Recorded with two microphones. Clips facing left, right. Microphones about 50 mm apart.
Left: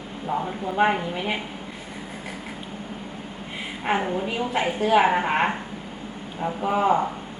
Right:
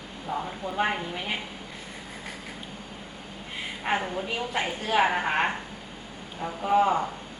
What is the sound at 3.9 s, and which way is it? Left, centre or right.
A woman's voice, centre.